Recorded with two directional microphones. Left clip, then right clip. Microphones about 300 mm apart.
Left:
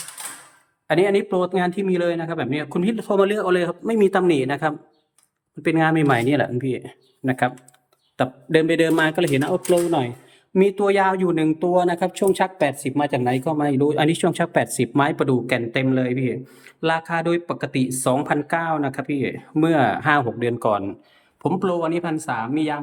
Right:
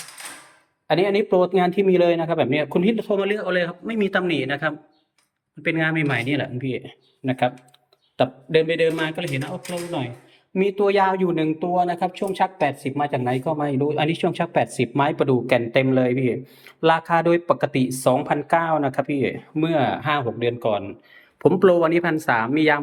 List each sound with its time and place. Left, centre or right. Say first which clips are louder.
0.9 s speech: even; centre
5.8 s speech: left 6 dB; centre
21.4 s speech: right 6 dB; centre